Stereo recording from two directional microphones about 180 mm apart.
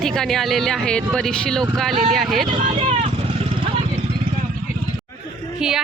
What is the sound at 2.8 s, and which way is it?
Vehicle, 30° right (ahead or behind).